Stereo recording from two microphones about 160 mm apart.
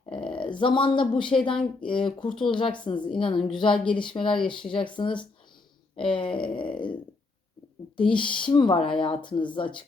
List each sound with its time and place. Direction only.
0.1 s a woman's voice: 30° left (ahead or behind)
8.1 s a woman's voice: 30° left (ahead or behind)